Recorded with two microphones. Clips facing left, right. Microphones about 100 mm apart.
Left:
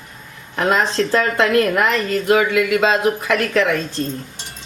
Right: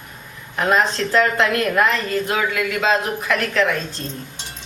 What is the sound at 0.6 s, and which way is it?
A woman's voice, 30° left (ahead or behind).